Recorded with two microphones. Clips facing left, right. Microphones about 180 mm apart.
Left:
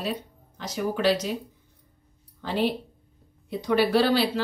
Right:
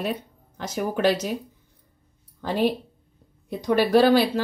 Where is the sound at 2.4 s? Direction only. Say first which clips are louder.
Right 3 dB; 45° right (ahead or behind).